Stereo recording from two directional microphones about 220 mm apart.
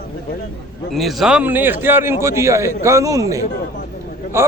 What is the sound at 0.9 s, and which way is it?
A man's voice, centre (ahead or behind).